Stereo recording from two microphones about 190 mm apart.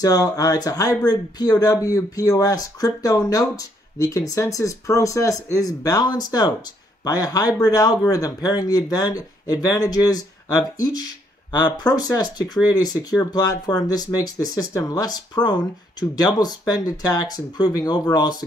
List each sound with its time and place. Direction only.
0.0 s speech: 20° left (ahead or behind)